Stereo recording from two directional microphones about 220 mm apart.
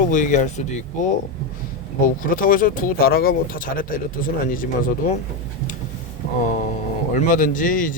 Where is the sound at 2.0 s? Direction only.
40° left (ahead or behind).